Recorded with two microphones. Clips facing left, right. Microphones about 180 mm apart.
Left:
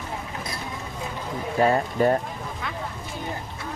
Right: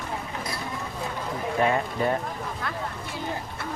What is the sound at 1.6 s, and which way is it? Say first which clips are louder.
Speech: left 4 dB; 35° left (ahead or behind).